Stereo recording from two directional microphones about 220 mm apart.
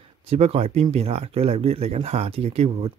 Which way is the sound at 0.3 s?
25° right (ahead or behind).